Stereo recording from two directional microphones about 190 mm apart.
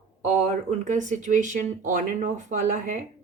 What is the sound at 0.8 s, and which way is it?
Speech, 40° right (ahead or behind).